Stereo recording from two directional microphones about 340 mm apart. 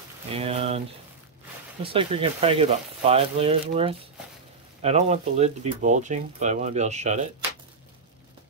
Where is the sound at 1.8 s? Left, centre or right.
Centre.